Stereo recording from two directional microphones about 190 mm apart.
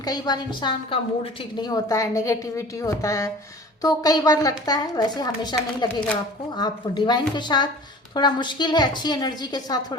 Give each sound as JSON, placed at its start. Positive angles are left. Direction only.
{"t": 0.0, "sound": "a woman's voice", "side_deg": 20}